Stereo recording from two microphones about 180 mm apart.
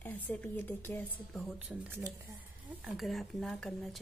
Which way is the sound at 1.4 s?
5° right (ahead or behind).